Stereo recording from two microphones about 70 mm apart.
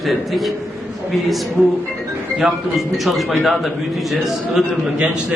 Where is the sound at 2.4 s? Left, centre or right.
Centre.